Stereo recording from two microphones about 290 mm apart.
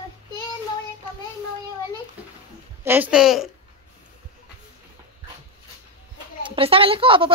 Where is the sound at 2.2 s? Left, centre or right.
Centre.